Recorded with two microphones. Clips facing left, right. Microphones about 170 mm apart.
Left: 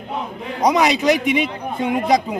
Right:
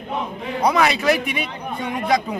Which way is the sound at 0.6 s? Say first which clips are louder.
Left 2 dB; 20° left (ahead or behind).